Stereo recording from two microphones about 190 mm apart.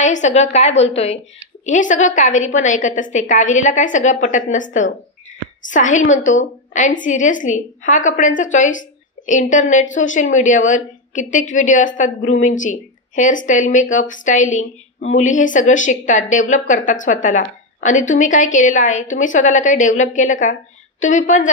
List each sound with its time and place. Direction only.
0.0 s a woman's voice: 40° left (ahead or behind)